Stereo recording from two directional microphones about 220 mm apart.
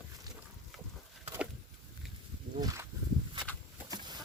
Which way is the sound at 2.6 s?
15° right (ahead or behind).